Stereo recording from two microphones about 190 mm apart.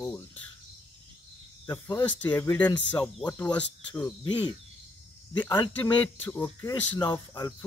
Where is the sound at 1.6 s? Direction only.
15° left (ahead or behind).